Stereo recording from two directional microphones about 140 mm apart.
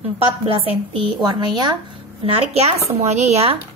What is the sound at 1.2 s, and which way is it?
Speech, 30° right (ahead or behind).